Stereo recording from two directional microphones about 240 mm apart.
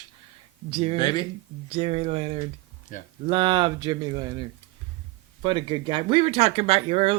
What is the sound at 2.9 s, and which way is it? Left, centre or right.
Speech, left.